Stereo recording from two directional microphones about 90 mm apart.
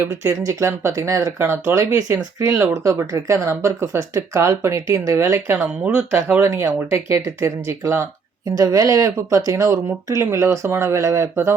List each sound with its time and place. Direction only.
0.0 s speech: 30° right (ahead or behind)
2.7 s speech: 35° right (ahead or behind); by 6.4 s 15° right (ahead or behind)
6.4 s speech: 30° right (ahead or behind)
8.4 s speech: 40° right (ahead or behind)